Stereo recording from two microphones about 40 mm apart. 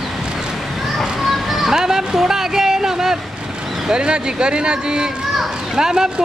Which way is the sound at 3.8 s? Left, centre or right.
Right.